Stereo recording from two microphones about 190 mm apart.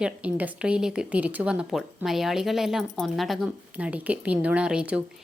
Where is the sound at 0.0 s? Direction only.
5° right (ahead or behind).